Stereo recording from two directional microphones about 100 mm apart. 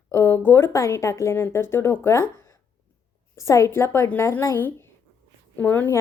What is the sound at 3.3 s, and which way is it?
A woman's voice, 30° left (ahead or behind).